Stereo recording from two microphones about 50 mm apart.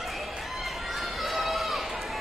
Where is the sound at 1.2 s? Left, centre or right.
Centre.